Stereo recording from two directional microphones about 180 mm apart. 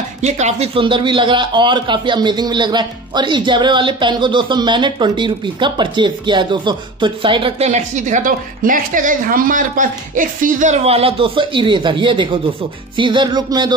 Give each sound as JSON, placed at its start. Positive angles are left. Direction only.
{"t": 0.2, "sound": "a man's voice", "side_deg": -40}